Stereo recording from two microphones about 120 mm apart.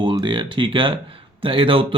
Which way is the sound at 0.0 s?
40° right (ahead or behind).